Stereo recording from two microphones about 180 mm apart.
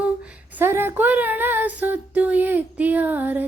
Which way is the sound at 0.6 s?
10° right (ahead or behind).